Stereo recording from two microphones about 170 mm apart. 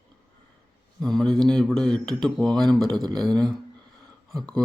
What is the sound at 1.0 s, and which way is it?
Speech, centre (ahead or behind).